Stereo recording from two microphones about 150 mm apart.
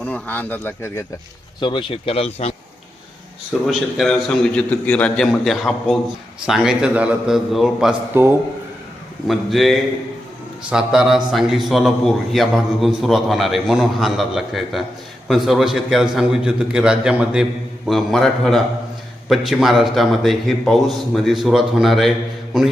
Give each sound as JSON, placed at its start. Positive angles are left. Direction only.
{"t": 0.0, "sound": "speech", "side_deg": 10}
{"t": 1.5, "sound": "speech", "side_deg": 35}
{"t": 3.7, "sound": "a man's voice", "side_deg": 0}
{"t": 8.1, "sound": "a man's voice", "side_deg": -15}
{"t": 9.2, "sound": "a man's voice", "side_deg": 0}